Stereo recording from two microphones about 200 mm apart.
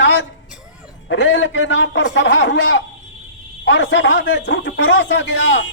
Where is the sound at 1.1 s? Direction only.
65° left (ahead or behind).